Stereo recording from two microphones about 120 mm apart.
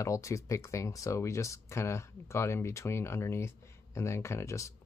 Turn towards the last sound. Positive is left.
turn(degrees=25)  # may be behind; listen again after turning